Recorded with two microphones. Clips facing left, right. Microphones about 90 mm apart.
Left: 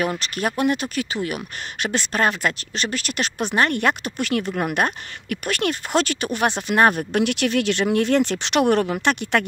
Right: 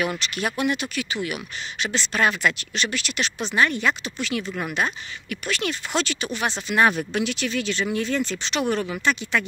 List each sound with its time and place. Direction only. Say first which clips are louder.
0.2 s speech: left 3 dB; 45° left (ahead or behind); by 9.4 s 60° left (ahead or behind)